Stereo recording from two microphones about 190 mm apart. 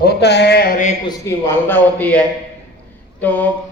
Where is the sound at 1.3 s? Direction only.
10° left (ahead or behind).